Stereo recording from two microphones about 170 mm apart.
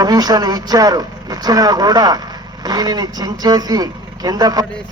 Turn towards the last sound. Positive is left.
turn(degrees=-20)  # may be behind; listen again after turning